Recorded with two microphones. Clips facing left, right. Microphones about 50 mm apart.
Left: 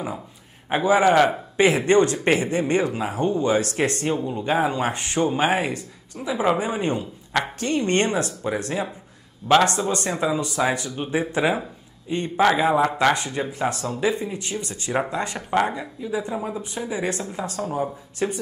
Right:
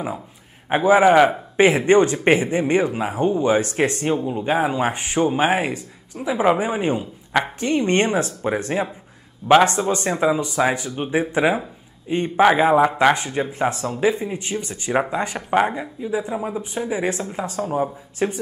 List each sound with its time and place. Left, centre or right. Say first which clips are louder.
0.7 s a man's voice: right 4 dB; centre
9.4 s a man's voice: right 3 dB; centre
9.8 s speech: right 4 dB; right
12.8 s speech: right 3 dB; centre